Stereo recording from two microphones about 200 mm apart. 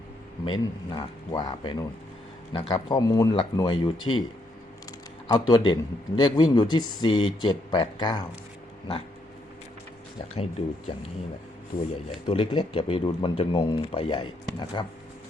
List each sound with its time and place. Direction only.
0.4 s speech: 20° left (ahead or behind)
11.7 s speech: 40° left (ahead or behind)
12.2 s speech: 30° left (ahead or behind)